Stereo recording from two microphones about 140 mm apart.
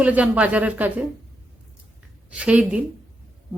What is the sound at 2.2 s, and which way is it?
Speech, 10° right (ahead or behind).